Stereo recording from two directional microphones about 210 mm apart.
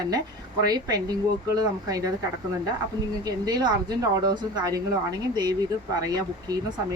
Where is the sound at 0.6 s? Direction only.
20° right (ahead or behind).